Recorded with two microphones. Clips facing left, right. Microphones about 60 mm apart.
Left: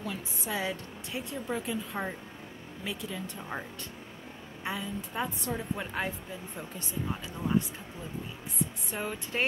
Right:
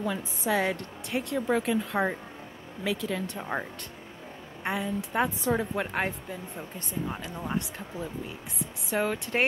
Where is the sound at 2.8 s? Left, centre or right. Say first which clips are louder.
Right 7 dB; right.